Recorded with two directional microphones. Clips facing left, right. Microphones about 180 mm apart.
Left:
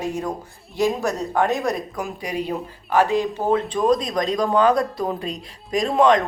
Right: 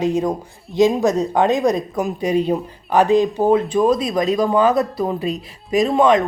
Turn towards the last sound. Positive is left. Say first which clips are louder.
# right 3 dB
turn(degrees=-5)  # may be behind; listen again after turning